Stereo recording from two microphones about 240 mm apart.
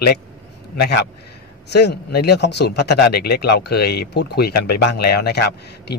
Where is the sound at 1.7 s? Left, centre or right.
Left.